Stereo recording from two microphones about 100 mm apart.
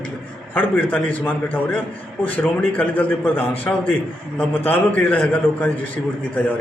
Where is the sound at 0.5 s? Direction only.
20° left (ahead or behind).